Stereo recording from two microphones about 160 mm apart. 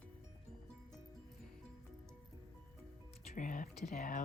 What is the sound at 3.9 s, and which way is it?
Speech, 60° left (ahead or behind).